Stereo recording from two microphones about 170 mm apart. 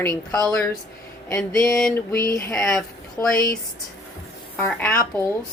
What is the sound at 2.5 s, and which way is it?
Speech, centre (ahead or behind).